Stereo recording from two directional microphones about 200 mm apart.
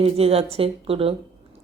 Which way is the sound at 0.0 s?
30° right (ahead or behind).